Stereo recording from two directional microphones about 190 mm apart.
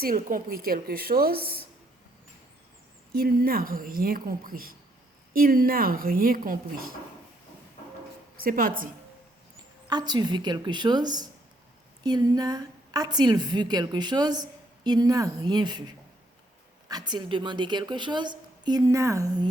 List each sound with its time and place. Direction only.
0.0 s a woman's voice: 50° right (ahead or behind)
3.1 s a woman's voice: 55° right (ahead or behind)
8.4 s a woman's voice: 45° right (ahead or behind)
9.9 s a woman's voice: 20° right (ahead or behind)